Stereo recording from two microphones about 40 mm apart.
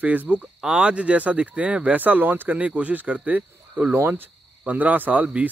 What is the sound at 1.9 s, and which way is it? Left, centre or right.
Speech, right.